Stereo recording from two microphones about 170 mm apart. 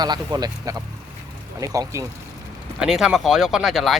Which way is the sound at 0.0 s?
25° right (ahead or behind).